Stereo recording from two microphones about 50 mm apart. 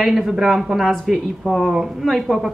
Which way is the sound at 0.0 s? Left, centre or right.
Centre.